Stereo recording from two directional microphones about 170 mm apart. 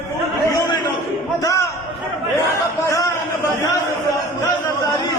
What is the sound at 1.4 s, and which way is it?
Speech, 20° left (ahead or behind).